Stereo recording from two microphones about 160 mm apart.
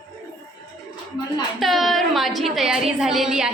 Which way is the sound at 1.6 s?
Centre (ahead or behind).